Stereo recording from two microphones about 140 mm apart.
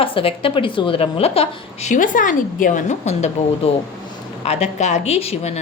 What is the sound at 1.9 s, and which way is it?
A woman's voice, 75° left (ahead or behind).